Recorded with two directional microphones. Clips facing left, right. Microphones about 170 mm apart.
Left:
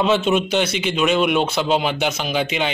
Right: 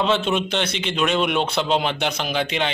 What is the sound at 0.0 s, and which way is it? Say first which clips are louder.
Speech: left 3 dB; 5° left (ahead or behind).